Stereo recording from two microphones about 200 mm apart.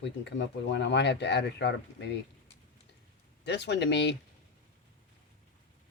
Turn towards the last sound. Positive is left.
turn(degrees=60)  # may be behind; listen again after turning